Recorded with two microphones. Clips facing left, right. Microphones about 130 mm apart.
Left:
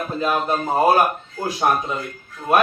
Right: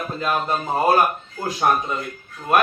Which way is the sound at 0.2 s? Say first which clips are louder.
Left 2 dB; 15° left (ahead or behind).